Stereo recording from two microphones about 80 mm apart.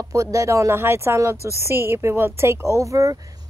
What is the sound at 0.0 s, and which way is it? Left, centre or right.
Speech, right.